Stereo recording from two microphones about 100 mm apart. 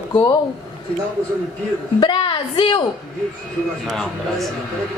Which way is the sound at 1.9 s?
55° left (ahead or behind).